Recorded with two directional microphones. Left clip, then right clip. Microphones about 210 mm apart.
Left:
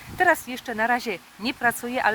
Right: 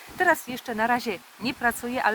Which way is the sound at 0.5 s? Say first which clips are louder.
Left 1 dB; 10° left (ahead or behind).